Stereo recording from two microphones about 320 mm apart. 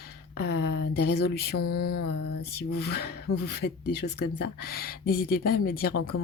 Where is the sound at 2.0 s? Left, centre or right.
Left.